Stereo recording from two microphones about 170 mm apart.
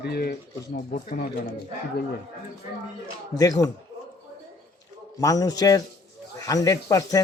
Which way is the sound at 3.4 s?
20° left (ahead or behind).